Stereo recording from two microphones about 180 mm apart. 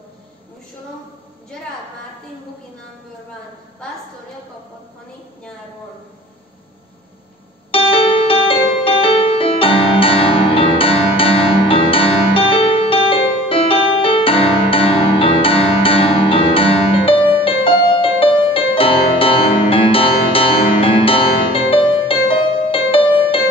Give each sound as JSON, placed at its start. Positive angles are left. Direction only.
{"t": 7.7, "sound": "music", "side_deg": 30}